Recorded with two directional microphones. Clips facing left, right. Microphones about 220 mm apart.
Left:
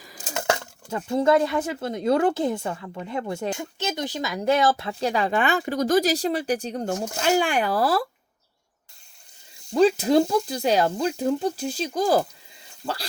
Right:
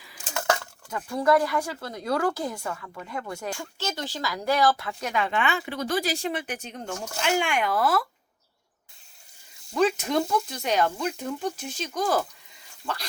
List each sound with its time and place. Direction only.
0.0 s coin: 40° left (ahead or behind)
0.3 s speech: 25° left (ahead or behind)
9.7 s speech: 30° left (ahead or behind)